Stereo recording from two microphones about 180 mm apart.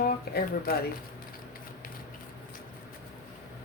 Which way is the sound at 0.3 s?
55° left (ahead or behind).